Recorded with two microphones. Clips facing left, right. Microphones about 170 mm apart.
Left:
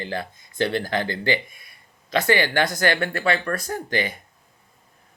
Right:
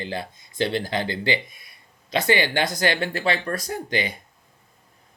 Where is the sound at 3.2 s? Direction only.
25° right (ahead or behind).